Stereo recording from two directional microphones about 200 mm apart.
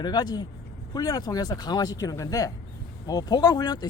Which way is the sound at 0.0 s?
20° left (ahead or behind).